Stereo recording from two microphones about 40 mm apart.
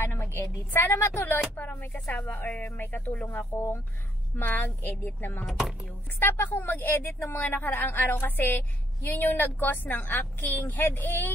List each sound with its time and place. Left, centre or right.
0.0 s a woman's voice: left
1.5 s a woman's voice: left
3.3 s a woman's voice: left
5.5 s speech: centre
6.1 s a woman's voice: left
7.3 s a woman's voice: left